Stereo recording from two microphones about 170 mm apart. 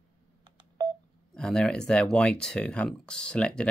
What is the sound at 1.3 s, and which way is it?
Speech, 5° left (ahead or behind).